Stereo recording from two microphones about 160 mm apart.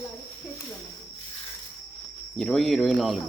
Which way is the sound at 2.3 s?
Centre (ahead or behind).